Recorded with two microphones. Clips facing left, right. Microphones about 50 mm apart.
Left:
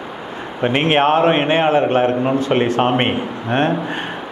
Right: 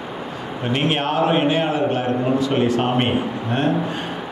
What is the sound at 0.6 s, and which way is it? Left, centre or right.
A man's voice, left.